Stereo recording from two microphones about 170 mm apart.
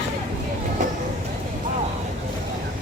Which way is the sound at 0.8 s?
50° right (ahead or behind).